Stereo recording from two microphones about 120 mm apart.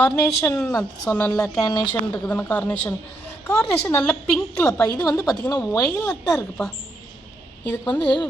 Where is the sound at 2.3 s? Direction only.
10° left (ahead or behind).